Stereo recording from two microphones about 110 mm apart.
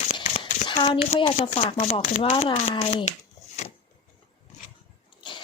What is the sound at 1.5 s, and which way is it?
Speech, 75° left (ahead or behind).